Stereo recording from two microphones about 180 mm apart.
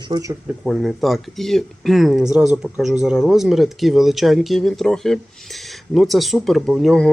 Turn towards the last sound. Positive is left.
turn(degrees=0)  # may be behind; listen again after turning